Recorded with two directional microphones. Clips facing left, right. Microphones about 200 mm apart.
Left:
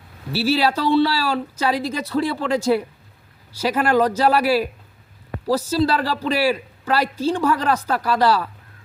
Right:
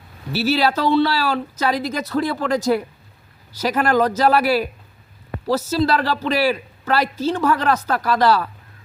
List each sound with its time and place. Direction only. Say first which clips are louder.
0.3 s speech: even; 30° left (ahead or behind)